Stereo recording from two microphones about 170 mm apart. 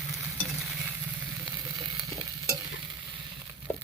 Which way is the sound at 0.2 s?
5° right (ahead or behind).